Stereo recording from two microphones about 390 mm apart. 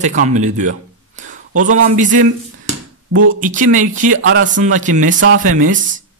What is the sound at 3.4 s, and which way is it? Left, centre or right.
A man's voice, centre.